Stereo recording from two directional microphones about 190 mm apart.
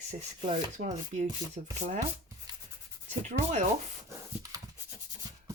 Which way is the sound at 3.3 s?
35° right (ahead or behind).